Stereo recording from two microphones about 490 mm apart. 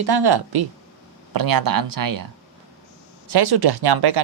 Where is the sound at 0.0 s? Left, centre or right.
Right.